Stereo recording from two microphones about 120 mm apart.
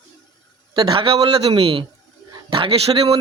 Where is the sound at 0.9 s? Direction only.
50° right (ahead or behind).